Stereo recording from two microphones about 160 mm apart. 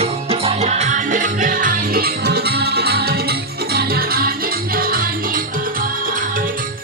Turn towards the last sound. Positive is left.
turn(degrees=-65)  # may be behind; listen again after turning